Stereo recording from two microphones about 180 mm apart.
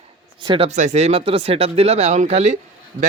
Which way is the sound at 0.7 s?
40° right (ahead or behind).